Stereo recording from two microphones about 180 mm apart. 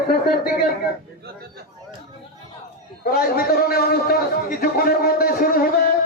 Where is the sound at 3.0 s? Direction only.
55° left (ahead or behind).